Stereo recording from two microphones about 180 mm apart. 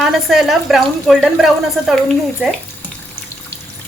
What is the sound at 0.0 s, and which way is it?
A woman's voice, centre (ahead or behind).